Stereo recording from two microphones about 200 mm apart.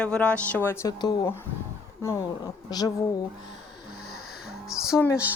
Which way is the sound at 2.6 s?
20° left (ahead or behind).